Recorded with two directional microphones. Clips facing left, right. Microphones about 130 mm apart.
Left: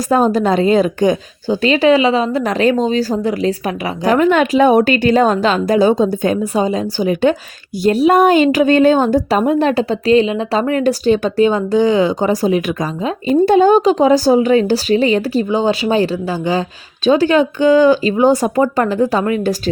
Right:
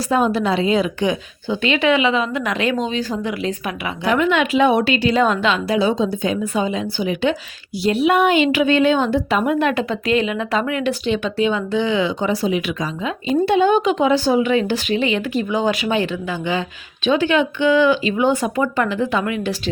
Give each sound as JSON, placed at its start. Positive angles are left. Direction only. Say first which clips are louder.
{"t": 0.1, "sound": "a woman's voice", "louder": "left 5 dB", "side_deg": 40}